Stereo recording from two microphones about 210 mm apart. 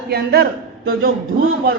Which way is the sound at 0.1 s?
50° right (ahead or behind).